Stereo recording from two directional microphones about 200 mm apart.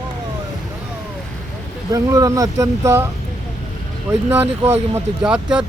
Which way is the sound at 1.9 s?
15° right (ahead or behind).